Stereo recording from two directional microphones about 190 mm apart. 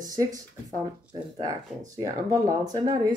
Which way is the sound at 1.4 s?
20° right (ahead or behind).